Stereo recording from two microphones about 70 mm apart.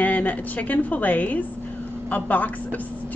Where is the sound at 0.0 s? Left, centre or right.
Left.